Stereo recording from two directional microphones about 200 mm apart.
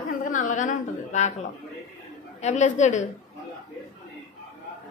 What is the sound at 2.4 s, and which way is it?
Speech, 35° left (ahead or behind).